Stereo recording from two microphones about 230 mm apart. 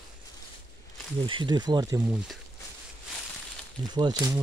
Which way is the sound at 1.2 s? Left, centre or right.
Right.